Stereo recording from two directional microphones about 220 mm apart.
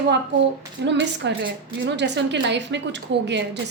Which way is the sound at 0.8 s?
55° right (ahead or behind).